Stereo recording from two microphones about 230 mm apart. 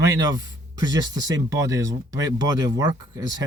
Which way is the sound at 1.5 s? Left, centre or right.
Centre.